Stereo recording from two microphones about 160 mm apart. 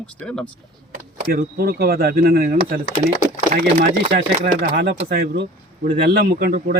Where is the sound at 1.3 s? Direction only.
65° right (ahead or behind).